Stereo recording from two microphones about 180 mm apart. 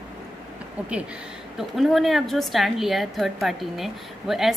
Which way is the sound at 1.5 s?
Centre (ahead or behind).